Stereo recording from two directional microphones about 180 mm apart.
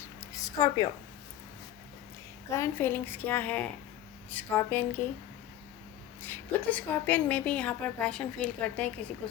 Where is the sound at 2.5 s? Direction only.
15° left (ahead or behind).